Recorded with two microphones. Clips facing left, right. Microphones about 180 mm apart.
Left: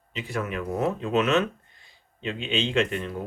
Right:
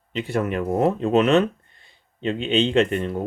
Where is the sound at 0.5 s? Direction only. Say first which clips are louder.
Right 6 dB; 45° right (ahead or behind).